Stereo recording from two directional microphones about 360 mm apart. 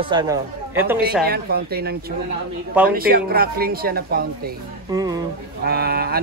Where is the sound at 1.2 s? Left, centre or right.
Right.